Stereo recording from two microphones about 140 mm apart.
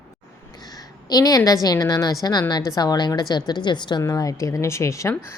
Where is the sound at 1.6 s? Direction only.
25° left (ahead or behind).